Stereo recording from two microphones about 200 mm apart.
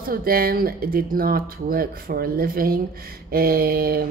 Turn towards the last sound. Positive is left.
turn(degrees=-50)  # may be behind; listen again after turning